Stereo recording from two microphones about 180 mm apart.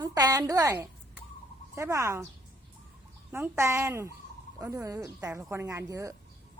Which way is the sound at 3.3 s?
15° right (ahead or behind).